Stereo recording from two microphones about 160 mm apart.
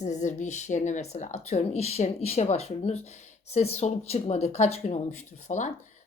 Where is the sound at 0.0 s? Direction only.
45° left (ahead or behind).